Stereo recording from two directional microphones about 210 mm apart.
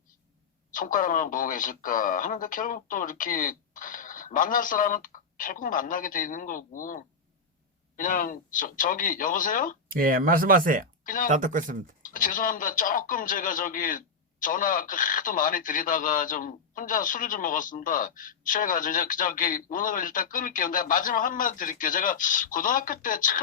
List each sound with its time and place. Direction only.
0.7 s speech: 40° left (ahead or behind)
9.9 s speech: 40° right (ahead or behind)
11.0 s speech: 40° left (ahead or behind)
11.3 s speech: 40° right (ahead or behind)
12.0 s speech: 40° left (ahead or behind)